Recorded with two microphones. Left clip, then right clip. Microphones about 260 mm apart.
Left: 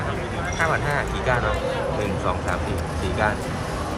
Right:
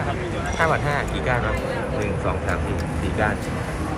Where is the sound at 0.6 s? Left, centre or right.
Centre.